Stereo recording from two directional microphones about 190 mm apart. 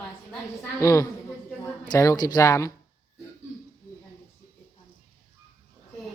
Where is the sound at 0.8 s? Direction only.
15° left (ahead or behind).